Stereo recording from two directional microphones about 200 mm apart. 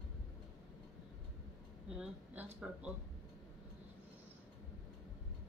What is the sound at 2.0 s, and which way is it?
Speech, 5° right (ahead or behind).